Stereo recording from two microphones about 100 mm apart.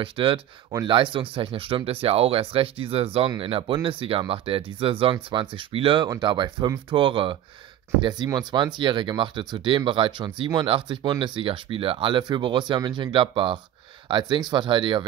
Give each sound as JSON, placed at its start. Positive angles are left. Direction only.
{"t": 0.0, "sound": "speech", "side_deg": -60}
{"t": 5.1, "sound": "speech", "side_deg": -55}
{"t": 6.0, "sound": "speech", "side_deg": -45}
{"t": 8.0, "sound": "speech", "side_deg": -45}